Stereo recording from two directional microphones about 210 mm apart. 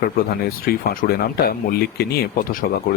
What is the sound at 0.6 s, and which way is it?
Speech, 45° left (ahead or behind).